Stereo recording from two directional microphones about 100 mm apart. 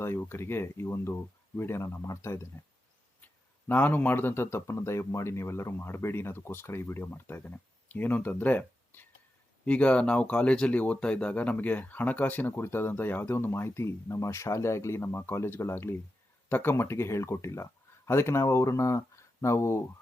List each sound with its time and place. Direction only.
0.0 s speech: 20° left (ahead or behind)
3.7 s speech: 15° left (ahead or behind)